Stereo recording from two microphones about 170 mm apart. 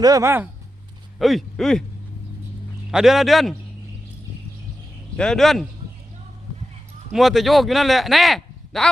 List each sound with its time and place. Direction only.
0.0 s speech: 20° right (ahead or behind)
1.2 s speech: centre (ahead or behind)
2.9 s speech: centre (ahead or behind)
5.1 s speech: 5° left (ahead or behind)
7.1 s speech: centre (ahead or behind)